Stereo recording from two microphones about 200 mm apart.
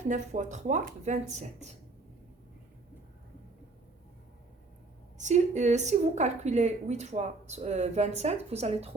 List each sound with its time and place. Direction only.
0.1 s a woman's voice: 35° right (ahead or behind)
5.1 s a woman's voice: 35° right (ahead or behind)